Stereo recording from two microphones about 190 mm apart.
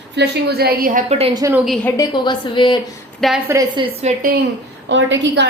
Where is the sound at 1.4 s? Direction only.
15° right (ahead or behind).